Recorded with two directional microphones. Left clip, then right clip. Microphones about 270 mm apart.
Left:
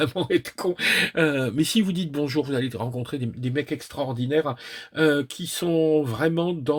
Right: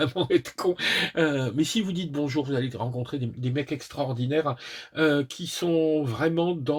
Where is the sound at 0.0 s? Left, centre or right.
Left.